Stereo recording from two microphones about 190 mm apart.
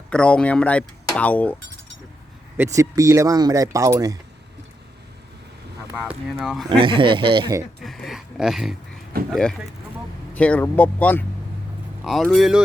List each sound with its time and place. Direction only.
0.1 s speech: 5° left (ahead or behind)
2.6 s speech: 15° right (ahead or behind)
6.3 s speech: centre (ahead or behind)
6.7 s speech: 25° right (ahead or behind)
7.8 s a sound: centre (ahead or behind)
9.3 s speech: centre (ahead or behind)